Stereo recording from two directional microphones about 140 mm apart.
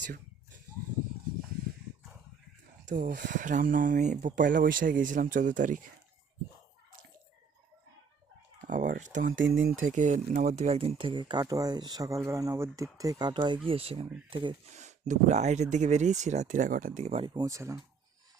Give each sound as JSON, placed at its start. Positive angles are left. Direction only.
{"t": 2.9, "sound": "speech", "side_deg": -80}
{"t": 8.6, "sound": "speech", "side_deg": -70}
{"t": 13.7, "sound": "speech", "side_deg": -45}
{"t": 14.7, "sound": "speech", "side_deg": -55}